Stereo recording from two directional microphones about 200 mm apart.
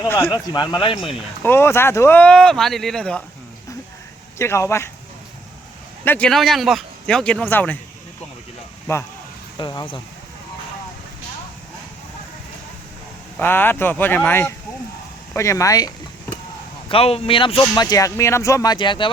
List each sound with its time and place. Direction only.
0.0 s speech: 15° left (ahead or behind)
1.4 s speech: 10° left (ahead or behind)
4.4 s speech: 15° left (ahead or behind)
6.1 s speech: 5° left (ahead or behind)
9.6 s speech: 25° left (ahead or behind)
13.3 s speech: 10° left (ahead or behind)
16.9 s speech: 30° left (ahead or behind)